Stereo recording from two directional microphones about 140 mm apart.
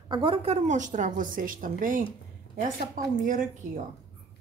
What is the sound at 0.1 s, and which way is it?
A woman's voice, 40° right (ahead or behind).